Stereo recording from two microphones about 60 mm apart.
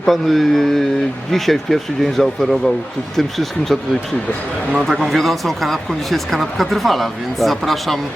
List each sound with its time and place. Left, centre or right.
0.0 s speech: centre
4.9 s speech: centre